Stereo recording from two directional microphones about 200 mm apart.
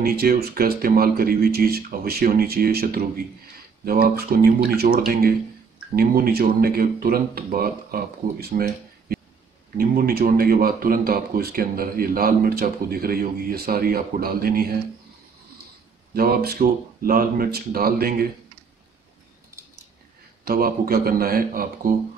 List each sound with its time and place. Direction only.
0.0 s speech: 50° right (ahead or behind)
16.1 s speech: 50° right (ahead or behind)
20.4 s speech: 45° right (ahead or behind)